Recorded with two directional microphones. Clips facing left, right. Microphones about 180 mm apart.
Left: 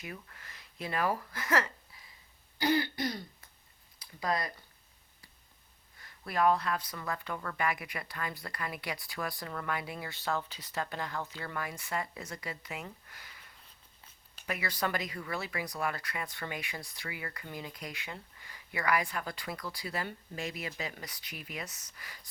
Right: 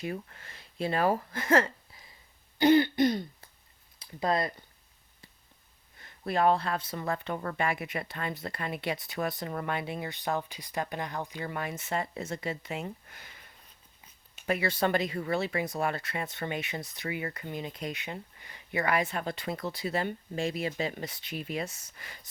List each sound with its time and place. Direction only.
0.0 s speech: 30° right (ahead or behind)
2.6 s throat clearing: 25° right (ahead or behind)
4.0 s speech: 25° right (ahead or behind)
6.0 s speech: 25° right (ahead or behind)
14.4 s speech: 30° right (ahead or behind)